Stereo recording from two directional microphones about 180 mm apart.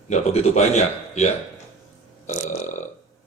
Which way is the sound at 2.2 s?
45° left (ahead or behind).